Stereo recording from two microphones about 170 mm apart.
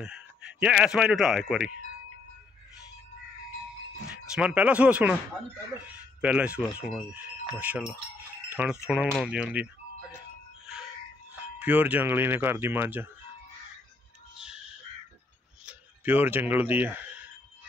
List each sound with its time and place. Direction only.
0.0 s speech: 5° right (ahead or behind)
4.3 s speech: 5° right (ahead or behind)
11.6 s speech: 10° right (ahead or behind)
15.6 s speech: 10° right (ahead or behind)